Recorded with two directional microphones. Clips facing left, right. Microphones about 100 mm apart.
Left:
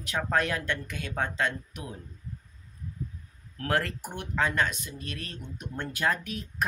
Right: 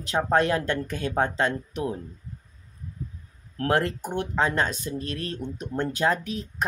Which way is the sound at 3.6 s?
25° right (ahead or behind).